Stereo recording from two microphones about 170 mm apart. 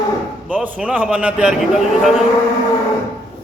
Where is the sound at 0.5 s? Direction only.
10° right (ahead or behind).